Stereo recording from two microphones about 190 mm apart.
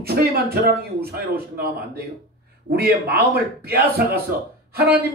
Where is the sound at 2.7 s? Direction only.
55° right (ahead or behind).